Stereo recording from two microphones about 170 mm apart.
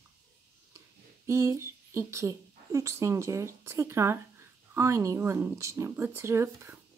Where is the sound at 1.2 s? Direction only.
15° right (ahead or behind).